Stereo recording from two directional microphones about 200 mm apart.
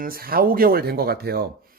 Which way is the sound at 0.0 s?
50° right (ahead or behind).